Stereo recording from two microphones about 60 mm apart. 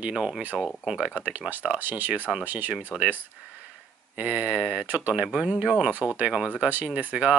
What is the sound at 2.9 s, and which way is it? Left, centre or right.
Speech, centre.